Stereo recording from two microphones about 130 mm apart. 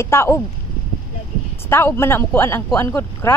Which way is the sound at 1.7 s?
20° left (ahead or behind).